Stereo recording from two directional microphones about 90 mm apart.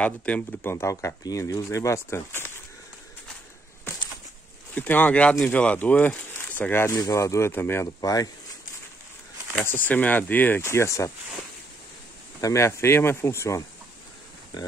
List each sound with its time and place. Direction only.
0.0 s speech: 15° left (ahead or behind)
0.7 s speech: 30° left (ahead or behind)
4.7 s speech: 20° left (ahead or behind)
6.9 s speech: 40° left (ahead or behind)
9.7 s speech: 20° left (ahead or behind)
10.6 s speech: 30° left (ahead or behind)
12.4 s speech: 35° left (ahead or behind)